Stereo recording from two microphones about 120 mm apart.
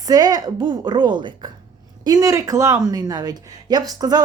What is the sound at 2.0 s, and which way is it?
Speech, 30° right (ahead or behind).